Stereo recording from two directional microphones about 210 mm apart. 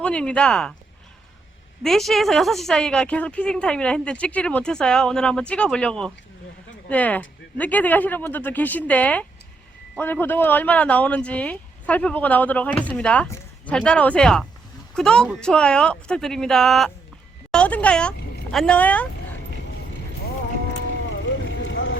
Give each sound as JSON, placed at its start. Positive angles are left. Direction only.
{"t": 0.0, "sound": "a woman's voice", "side_deg": 5}
{"t": 1.8, "sound": "a woman's voice", "side_deg": 0}
{"t": 21.1, "sound": "vehicle", "side_deg": 60}